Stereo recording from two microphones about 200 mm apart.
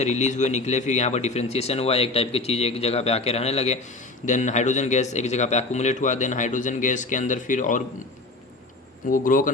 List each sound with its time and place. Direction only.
0.0 s speech: 35° left (ahead or behind)
9.0 s speech: 40° left (ahead or behind)